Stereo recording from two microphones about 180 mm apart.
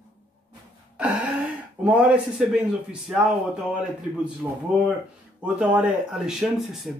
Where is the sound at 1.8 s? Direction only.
5° right (ahead or behind).